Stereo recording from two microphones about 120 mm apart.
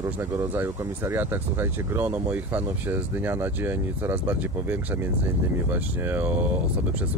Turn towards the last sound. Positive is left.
turn(degrees=-15)  # may be behind; listen again after turning